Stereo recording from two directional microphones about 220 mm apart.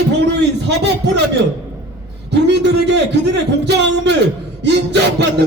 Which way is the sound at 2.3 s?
50° right (ahead or behind).